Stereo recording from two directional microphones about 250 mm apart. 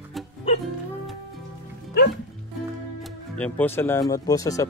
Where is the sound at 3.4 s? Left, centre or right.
Centre.